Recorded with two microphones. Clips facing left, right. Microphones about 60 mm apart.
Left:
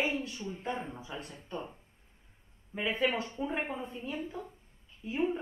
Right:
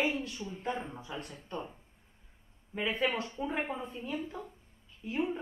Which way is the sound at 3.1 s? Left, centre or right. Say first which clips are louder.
Left 1 dB; left.